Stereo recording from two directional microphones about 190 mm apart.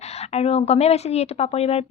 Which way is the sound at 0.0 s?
35° left (ahead or behind).